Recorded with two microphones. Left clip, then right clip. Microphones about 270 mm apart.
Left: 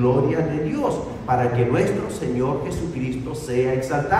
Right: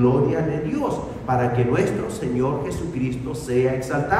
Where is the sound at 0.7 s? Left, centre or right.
Centre.